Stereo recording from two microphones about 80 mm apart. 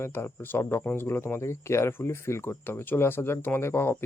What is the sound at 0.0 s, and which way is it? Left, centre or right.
Speech, left.